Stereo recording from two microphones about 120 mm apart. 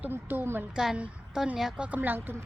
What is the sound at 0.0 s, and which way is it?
A woman's voice, 15° right (ahead or behind).